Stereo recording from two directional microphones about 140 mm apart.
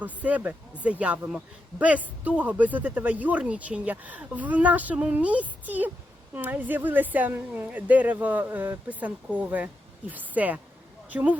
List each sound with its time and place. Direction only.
0.0 s speech: 10° right (ahead or behind)